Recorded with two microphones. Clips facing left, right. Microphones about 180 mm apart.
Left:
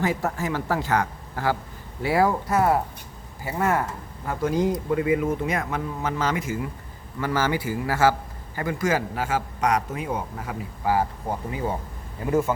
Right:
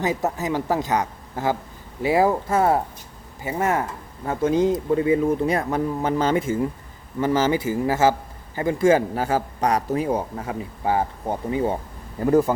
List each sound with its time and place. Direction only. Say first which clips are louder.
0.0 s a man's voice: right 2 dB; 20° right (ahead or behind)
12.2 s a man's voice: right 5 dB; 35° right (ahead or behind)